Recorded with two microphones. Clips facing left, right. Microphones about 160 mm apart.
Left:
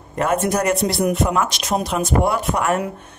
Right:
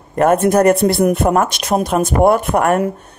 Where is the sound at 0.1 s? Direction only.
50° right (ahead or behind).